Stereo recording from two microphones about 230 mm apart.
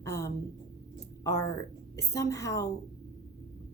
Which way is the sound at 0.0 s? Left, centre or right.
Centre.